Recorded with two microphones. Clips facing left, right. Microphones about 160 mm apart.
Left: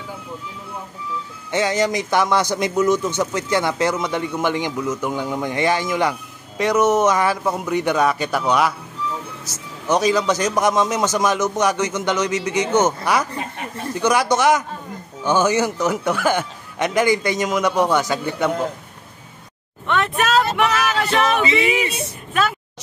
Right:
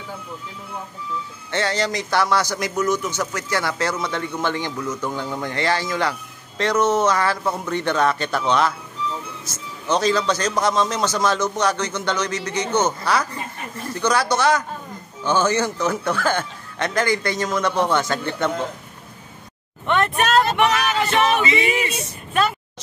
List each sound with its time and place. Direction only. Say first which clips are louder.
1.5 s a man's voice: left 3 dB; 15° left (ahead or behind)
9.8 s a man's voice: left 2 dB; 15° left (ahead or behind)
20.0 s vehicle: even; centre (ahead or behind)
21.7 s speech: left 2 dB; centre (ahead or behind)